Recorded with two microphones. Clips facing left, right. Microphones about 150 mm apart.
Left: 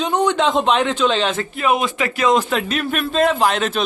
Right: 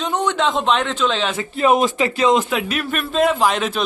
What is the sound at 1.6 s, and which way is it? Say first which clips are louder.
Speech: right 4 dB; 35° right (ahead or behind).